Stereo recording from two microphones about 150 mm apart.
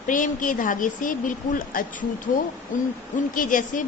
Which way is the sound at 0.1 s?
60° left (ahead or behind).